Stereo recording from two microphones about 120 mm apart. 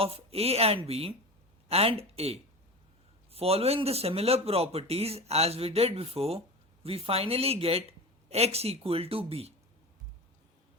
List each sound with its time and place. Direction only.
0.0 s a man's voice: 55° right (ahead or behind)